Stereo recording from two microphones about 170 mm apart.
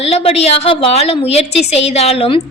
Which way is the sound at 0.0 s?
35° left (ahead or behind).